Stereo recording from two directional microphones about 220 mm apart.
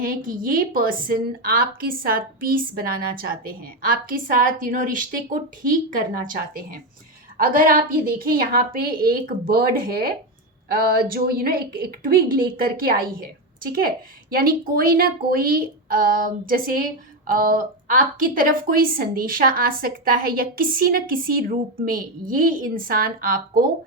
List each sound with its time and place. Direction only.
0.3 s a woman's voice: 40° right (ahead or behind)